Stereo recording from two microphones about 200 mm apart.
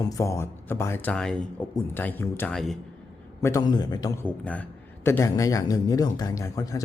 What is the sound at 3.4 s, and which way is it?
A man's voice, 20° left (ahead or behind).